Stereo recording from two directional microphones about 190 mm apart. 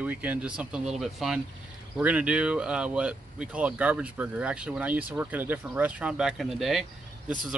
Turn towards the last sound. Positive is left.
turn(degrees=0)  # may be behind; listen again after turning